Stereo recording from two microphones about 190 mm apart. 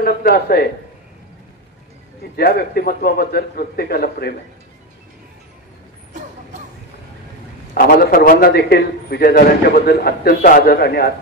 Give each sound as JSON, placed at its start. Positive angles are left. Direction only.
{"t": 0.0, "sound": "speech", "side_deg": 55}
{"t": 2.3, "sound": "a man's voice", "side_deg": 55}
{"t": 7.7, "sound": "a man's voice", "side_deg": 50}